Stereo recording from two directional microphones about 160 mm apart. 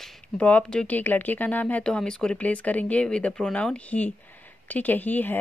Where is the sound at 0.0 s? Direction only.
5° left (ahead or behind).